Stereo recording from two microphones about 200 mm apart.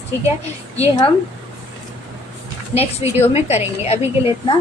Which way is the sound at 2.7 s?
30° left (ahead or behind).